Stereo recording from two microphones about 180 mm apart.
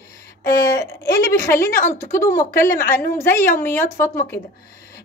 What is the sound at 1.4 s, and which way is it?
A woman's voice, 15° left (ahead or behind).